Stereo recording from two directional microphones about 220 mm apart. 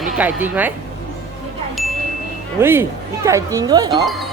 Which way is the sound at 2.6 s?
10° right (ahead or behind).